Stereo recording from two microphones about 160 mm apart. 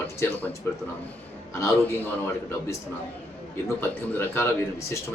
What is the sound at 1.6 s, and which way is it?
Speech, 10° left (ahead or behind).